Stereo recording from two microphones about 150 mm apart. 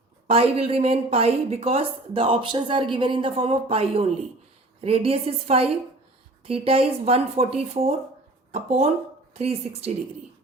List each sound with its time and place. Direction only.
0.3 s a woman's voice: 40° right (ahead or behind)